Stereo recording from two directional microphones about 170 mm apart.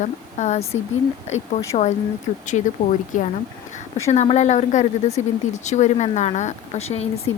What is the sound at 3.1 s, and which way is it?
Speech, 50° left (ahead or behind).